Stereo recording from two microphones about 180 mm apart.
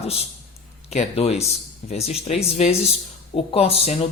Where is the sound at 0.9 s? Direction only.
35° left (ahead or behind).